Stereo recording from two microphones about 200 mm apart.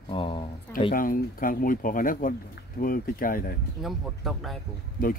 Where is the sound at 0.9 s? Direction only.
45° left (ahead or behind).